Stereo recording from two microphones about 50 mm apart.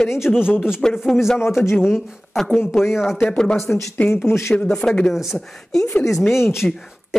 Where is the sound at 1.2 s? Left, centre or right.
Centre.